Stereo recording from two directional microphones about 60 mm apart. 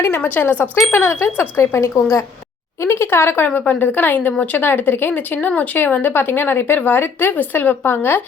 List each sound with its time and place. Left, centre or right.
0.2 s speech: left
0.8 s speech: left
1.7 s speech: left
2.8 s speech: left